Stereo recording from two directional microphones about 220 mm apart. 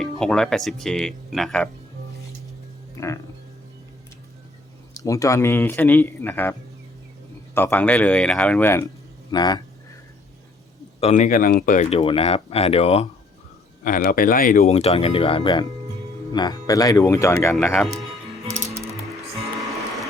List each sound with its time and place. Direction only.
0.0 s speech: 5° left (ahead or behind)
3.0 s speech: 15° left (ahead or behind)
4.9 s speech: 15° left (ahead or behind)
9.3 s a sound: 20° left (ahead or behind)
11.0 s speech: 35° left (ahead or behind)
13.8 s speech: 40° left (ahead or behind); by 17.5 s 15° left (ahead or behind)
17.5 s music: 5° left (ahead or behind)